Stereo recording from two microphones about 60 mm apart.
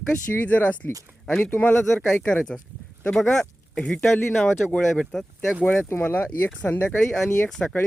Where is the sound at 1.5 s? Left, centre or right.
Left.